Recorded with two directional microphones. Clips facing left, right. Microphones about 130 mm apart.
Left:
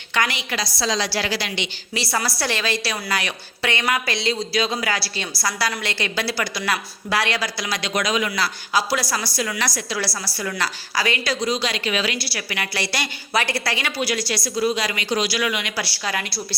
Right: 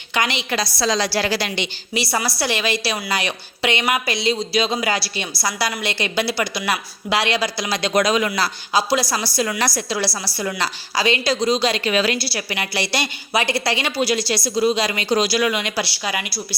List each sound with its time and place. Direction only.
0.1 s a woman's voice: 20° right (ahead or behind)
0.5 s a woman's voice: 45° right (ahead or behind)
1.9 s a woman's voice: 15° right (ahead or behind); by 8.4 s 35° right (ahead or behind)
8.7 s a woman's voice: 20° right (ahead or behind); by 12.2 s 40° right (ahead or behind)
12.2 s a woman's voice: 25° right (ahead or behind)